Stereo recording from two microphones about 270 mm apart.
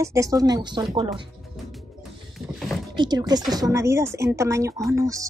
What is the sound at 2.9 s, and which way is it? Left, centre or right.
A woman's voice, centre.